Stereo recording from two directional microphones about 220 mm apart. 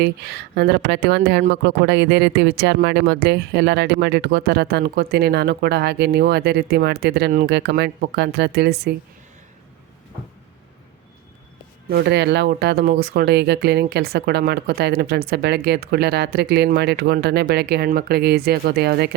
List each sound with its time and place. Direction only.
0.0 s speech: 50° right (ahead or behind)
11.9 s speech: 50° right (ahead or behind)